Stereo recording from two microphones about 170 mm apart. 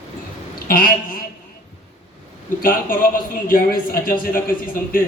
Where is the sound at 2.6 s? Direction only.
55° left (ahead or behind).